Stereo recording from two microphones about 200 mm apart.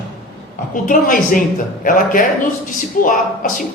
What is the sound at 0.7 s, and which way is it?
Speech, 40° left (ahead or behind).